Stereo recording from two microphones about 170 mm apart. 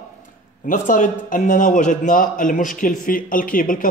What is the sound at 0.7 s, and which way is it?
A man's voice, 50° left (ahead or behind).